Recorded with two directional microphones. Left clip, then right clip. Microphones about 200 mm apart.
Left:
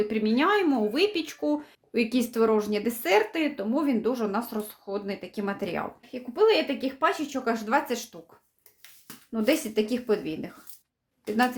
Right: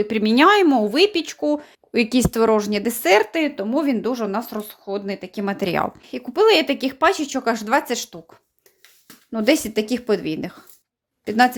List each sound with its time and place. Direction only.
0.0 s speech: 50° right (ahead or behind)
9.3 s speech: 40° right (ahead or behind)